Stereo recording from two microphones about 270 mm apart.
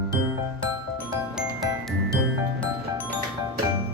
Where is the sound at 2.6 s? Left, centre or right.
Centre.